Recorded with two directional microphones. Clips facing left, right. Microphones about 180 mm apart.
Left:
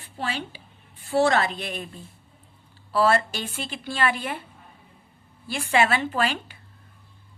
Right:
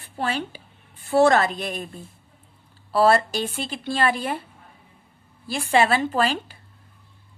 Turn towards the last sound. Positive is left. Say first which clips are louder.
# right 3 dB
turn(degrees=-35)  # may be behind; listen again after turning